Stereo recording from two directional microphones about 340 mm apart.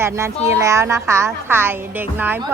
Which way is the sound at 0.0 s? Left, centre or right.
Centre.